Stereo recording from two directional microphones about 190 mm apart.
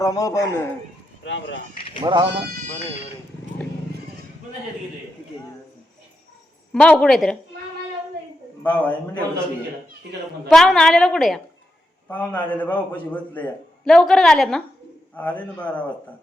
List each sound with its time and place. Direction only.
0.0 s a man's voice: 15° left (ahead or behind)
1.2 s speech: 70° left (ahead or behind)
2.0 s speech: 25° right (ahead or behind)
6.7 s a woman's voice: 5° left (ahead or behind)
8.6 s a man's voice: 10° left (ahead or behind)
10.5 s a woman's voice: centre (ahead or behind)